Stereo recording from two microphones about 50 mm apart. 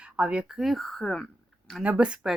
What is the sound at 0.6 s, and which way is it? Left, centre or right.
Speech, centre.